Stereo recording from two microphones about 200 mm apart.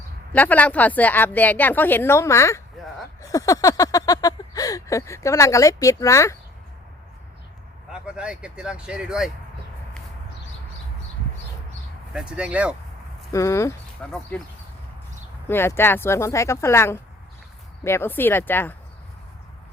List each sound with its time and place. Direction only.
0.3 s speech: 10° left (ahead or behind)
3.2 s a sound: 15° left (ahead or behind)
7.9 s speech: 5° right (ahead or behind)
12.1 s speech: 5° right (ahead or behind)
13.3 s speech: 15° left (ahead or behind)
15.4 s speech: 10° left (ahead or behind)